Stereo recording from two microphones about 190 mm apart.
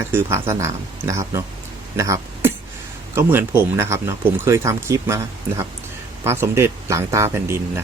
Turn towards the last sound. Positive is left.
turn(degrees=-15)  # may be behind; listen again after turning